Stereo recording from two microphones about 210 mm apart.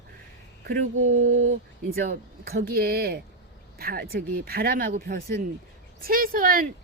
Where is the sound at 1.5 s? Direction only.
45° right (ahead or behind).